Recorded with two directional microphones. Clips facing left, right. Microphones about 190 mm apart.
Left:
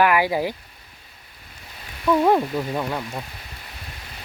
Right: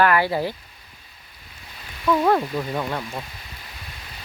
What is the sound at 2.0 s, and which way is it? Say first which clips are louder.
Speech: left 1 dB; 15° left (ahead or behind).